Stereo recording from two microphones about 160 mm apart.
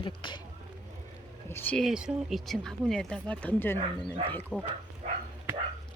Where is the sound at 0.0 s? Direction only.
30° left (ahead or behind).